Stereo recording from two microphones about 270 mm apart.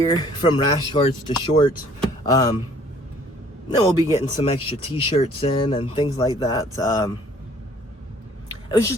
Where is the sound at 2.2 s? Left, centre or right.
Centre.